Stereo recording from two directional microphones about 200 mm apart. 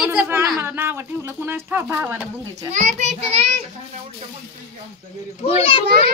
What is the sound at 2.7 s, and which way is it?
Speech, 35° right (ahead or behind).